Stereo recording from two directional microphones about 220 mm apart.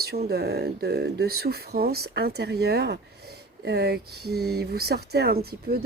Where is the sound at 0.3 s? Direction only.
45° right (ahead or behind).